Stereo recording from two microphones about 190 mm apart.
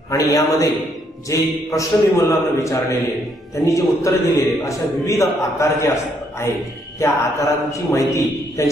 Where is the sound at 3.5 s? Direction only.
15° left (ahead or behind).